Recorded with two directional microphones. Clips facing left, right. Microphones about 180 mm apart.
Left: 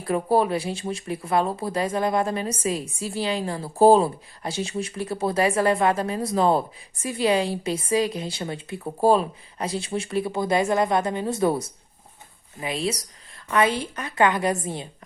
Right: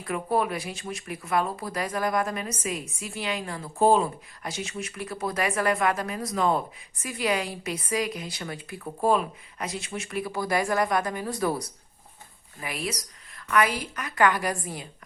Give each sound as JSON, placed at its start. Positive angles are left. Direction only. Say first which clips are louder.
{"t": 0.0, "sound": "speech", "louder": "left 5 dB", "side_deg": 30}